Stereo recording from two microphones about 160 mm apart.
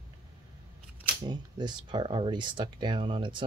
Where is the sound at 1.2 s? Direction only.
25° right (ahead or behind).